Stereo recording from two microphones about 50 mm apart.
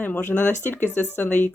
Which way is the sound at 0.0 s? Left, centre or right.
Left.